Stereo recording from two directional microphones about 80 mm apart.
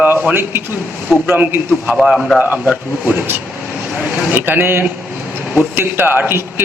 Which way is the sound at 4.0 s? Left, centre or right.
Right.